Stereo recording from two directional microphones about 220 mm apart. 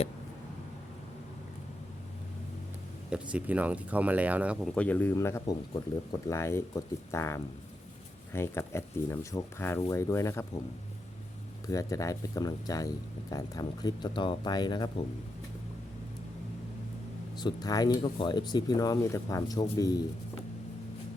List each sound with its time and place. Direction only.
3.1 s speech: 5° right (ahead or behind)
4.7 s speech: 5° left (ahead or behind)
11.7 s speech: 15° left (ahead or behind)
17.3 s speech: 20° left (ahead or behind)